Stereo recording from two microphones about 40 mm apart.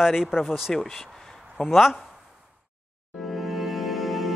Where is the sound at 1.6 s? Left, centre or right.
Centre.